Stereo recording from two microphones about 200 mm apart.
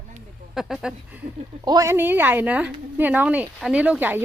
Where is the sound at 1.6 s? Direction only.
15° right (ahead or behind).